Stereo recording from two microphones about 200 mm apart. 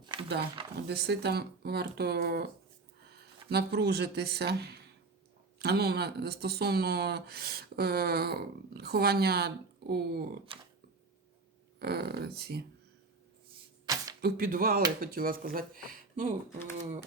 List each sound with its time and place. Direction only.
0.0 s a sound: 25° right (ahead or behind)
0.9 s speech: 55° right (ahead or behind)
3.5 s speech: 55° right (ahead or behind)
10.5 s speech: 25° right (ahead or behind)
11.8 s speech: 55° right (ahead or behind)
13.8 s a sound: 20° right (ahead or behind)
14.2 s speech: 50° right (ahead or behind)